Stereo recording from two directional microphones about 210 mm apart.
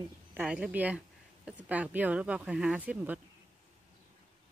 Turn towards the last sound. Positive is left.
turn(degrees=-5)  # may be behind; listen again after turning